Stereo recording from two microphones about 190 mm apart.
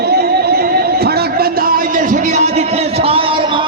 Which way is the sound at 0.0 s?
55° right (ahead or behind).